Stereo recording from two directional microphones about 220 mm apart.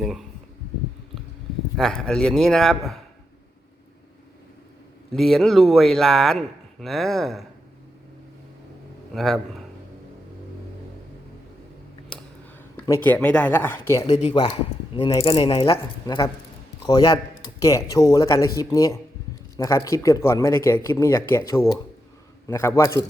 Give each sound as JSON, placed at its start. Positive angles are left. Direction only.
{"t": 0.0, "sound": "a sound", "side_deg": 0}
{"t": 1.7, "sound": "a man's voice", "side_deg": 0}
{"t": 5.1, "sound": "a man's voice", "side_deg": 0}
{"t": 9.1, "sound": "a man's voice", "side_deg": 0}
{"t": 12.7, "sound": "a man's voice", "side_deg": 10}
{"t": 15.1, "sound": "a man's voice", "side_deg": 25}